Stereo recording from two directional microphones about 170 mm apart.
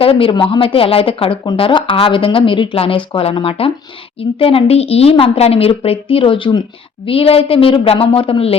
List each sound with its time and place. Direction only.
0.0 s speech: 30° left (ahead or behind)